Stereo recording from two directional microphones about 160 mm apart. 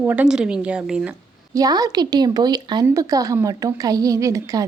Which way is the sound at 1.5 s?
25° right (ahead or behind).